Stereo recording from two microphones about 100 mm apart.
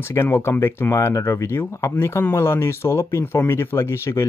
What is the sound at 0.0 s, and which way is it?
Speech, 25° left (ahead or behind).